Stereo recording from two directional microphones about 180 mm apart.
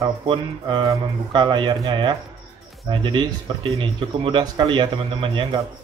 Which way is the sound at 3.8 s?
30° right (ahead or behind).